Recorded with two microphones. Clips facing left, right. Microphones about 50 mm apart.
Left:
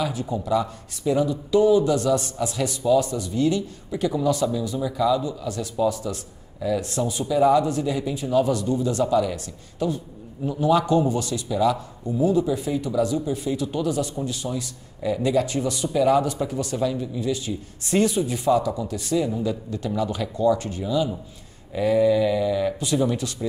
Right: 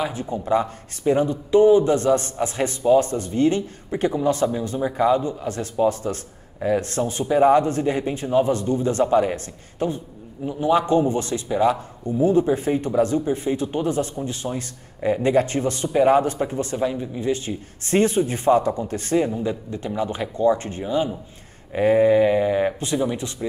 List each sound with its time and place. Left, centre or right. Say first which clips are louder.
0.0 s speech: even; right
19.4 s speech: even; right